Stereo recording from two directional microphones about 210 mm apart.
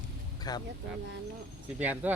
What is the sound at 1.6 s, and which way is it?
Speech, 5° right (ahead or behind).